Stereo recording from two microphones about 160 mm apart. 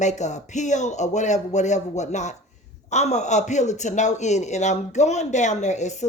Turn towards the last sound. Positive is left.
turn(degrees=45)  # may be behind; listen again after turning